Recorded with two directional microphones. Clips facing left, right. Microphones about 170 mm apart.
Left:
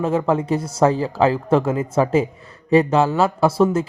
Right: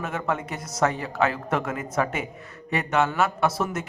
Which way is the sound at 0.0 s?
30° left (ahead or behind).